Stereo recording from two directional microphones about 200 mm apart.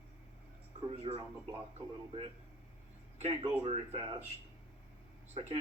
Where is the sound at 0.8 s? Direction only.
30° right (ahead or behind).